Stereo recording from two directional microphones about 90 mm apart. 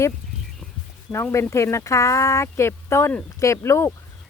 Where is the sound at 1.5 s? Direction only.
35° left (ahead or behind).